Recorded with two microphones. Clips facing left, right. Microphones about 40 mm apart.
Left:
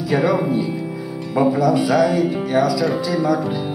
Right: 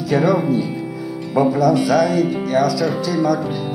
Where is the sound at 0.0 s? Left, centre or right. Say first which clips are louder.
Right 1 dB; centre.